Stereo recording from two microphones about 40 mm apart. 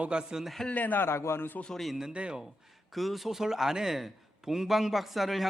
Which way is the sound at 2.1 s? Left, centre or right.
Right.